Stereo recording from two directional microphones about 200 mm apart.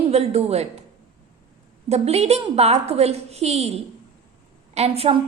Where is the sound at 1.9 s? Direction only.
30° right (ahead or behind).